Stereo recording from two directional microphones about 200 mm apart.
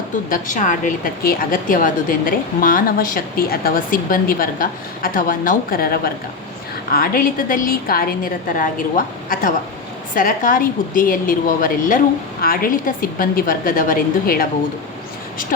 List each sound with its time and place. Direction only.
0.3 s a woman's voice: 40° left (ahead or behind)
10.2 s a woman's voice: 45° left (ahead or behind)